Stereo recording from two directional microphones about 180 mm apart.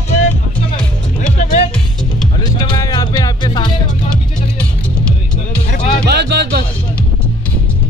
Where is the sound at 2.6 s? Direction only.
20° left (ahead or behind).